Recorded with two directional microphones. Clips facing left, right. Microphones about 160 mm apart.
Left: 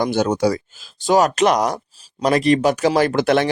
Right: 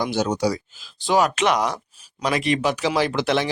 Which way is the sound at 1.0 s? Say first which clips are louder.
Left 4 dB; 40° left (ahead or behind).